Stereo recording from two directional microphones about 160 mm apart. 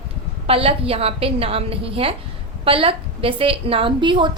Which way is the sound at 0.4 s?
35° right (ahead or behind).